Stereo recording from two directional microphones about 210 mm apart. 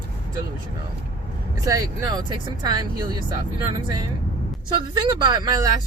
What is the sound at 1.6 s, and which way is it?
Speech, 15° right (ahead or behind).